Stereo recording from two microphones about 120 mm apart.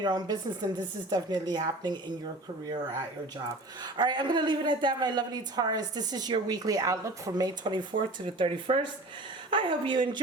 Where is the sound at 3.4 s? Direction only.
35° right (ahead or behind).